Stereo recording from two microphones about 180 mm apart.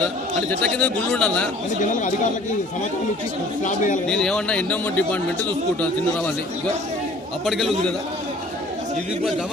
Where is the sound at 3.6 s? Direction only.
45° left (ahead or behind).